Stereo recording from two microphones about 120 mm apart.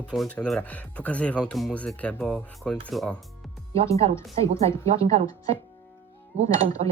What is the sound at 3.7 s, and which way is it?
Speech, 55° right (ahead or behind).